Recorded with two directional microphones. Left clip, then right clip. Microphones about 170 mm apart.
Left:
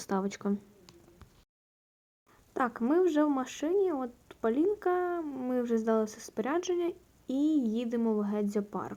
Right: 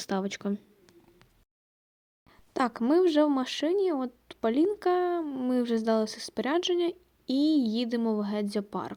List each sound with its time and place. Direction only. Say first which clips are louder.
0.3 s speech: right 1 dB; 25° right (ahead or behind)
2.3 s a sound: right 3 dB; 50° right (ahead or behind)
2.6 s speech: right 4 dB; 35° right (ahead or behind)
3.0 s speech: right 3 dB; 45° right (ahead or behind)
3.8 s speech: right 3 dB; 40° right (ahead or behind)
5.5 s speech: right 2 dB; 50° right (ahead or behind)
8.0 s speech: right 1 dB; 35° right (ahead or behind)